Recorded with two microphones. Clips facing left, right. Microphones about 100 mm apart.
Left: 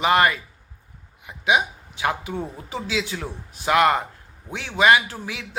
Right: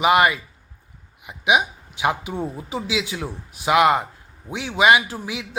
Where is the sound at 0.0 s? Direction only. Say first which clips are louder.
Right 2 dB; 10° right (ahead or behind).